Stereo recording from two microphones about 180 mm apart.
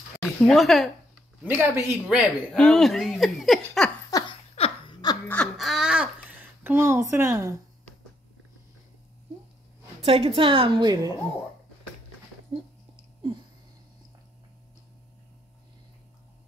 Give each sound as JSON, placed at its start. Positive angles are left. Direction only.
{"t": 0.2, "sound": "speech", "side_deg": 0}
{"t": 1.4, "sound": "a woman's voice", "side_deg": -10}
{"t": 4.1, "sound": "laughter", "side_deg": 30}
{"t": 5.3, "sound": "laughter", "side_deg": 5}
{"t": 6.6, "sound": "a woman's voice", "side_deg": -10}
{"t": 10.0, "sound": "a woman's voice", "side_deg": -30}